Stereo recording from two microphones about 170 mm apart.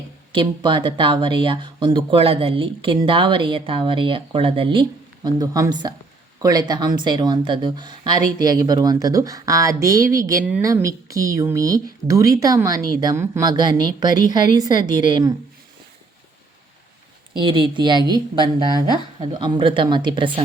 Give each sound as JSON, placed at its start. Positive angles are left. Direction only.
{"t": 0.3, "sound": "speech", "side_deg": -30}
{"t": 17.3, "sound": "speech", "side_deg": -30}